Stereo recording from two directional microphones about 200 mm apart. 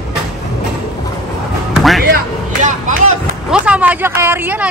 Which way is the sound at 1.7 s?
Centre (ahead or behind).